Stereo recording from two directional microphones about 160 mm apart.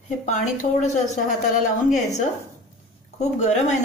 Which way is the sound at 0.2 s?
50° left (ahead or behind).